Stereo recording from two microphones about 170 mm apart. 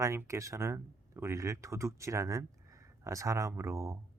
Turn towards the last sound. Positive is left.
turn(degrees=-15)  # may be behind; listen again after turning